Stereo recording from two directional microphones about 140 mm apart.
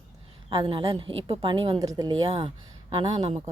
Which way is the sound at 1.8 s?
25° right (ahead or behind).